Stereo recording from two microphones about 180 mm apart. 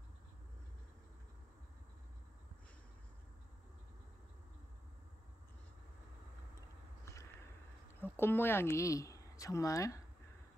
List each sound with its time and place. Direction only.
8.0 s speech: 10° left (ahead or behind)